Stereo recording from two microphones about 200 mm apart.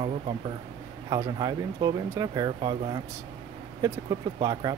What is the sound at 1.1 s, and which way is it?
Speech, 20° right (ahead or behind).